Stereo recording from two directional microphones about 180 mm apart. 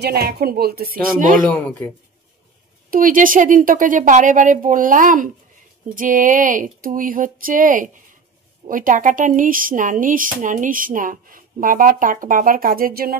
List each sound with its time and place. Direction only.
0.0 s speech: 60° right (ahead or behind)
1.5 s speech: 10° left (ahead or behind)
2.9 s speech: 50° right (ahead or behind)